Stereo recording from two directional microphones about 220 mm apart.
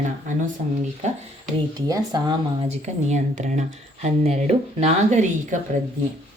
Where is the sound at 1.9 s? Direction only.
20° right (ahead or behind).